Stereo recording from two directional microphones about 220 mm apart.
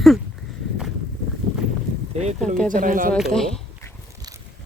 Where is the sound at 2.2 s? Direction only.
30° right (ahead or behind).